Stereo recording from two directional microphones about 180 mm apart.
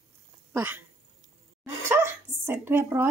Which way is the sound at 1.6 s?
15° right (ahead or behind).